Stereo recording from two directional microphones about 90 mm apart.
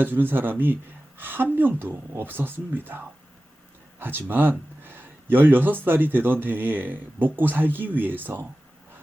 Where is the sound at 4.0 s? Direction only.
25° right (ahead or behind).